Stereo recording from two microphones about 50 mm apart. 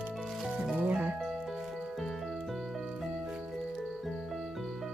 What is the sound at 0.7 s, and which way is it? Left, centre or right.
Music, right.